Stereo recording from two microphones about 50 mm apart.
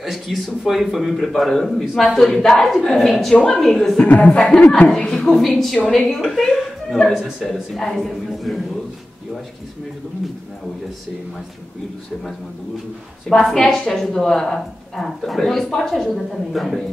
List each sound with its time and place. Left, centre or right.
0.0 s a woman's voice: centre
4.0 s speech: left
4.9 s a woman's voice: centre
6.0 s speech: centre
13.3 s a woman's voice: centre